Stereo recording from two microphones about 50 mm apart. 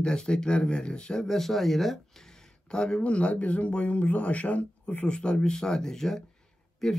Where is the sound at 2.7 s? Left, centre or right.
Centre.